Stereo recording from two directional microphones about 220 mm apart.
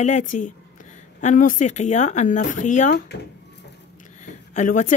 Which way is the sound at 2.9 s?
50° left (ahead or behind).